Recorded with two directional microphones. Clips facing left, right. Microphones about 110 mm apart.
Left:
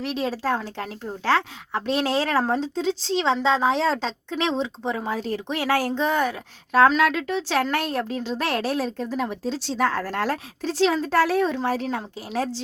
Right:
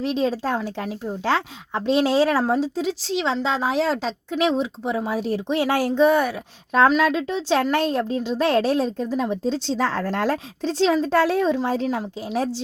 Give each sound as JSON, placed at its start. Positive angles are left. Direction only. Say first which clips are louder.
{"t": 0.0, "sound": "speech", "louder": "right 3 dB", "side_deg": -20}